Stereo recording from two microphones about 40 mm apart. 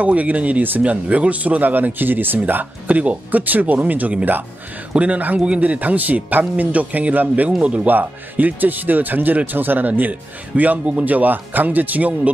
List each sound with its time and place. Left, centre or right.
0.0 s speech: right
1.0 s speech: right
4.9 s speech: right
7.9 s speech: right